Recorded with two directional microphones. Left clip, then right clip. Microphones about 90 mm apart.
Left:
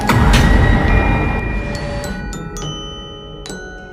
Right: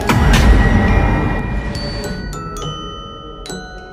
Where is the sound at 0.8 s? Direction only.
Centre (ahead or behind).